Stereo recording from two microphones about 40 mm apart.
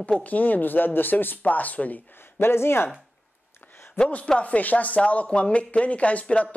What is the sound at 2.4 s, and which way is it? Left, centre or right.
Speech, left.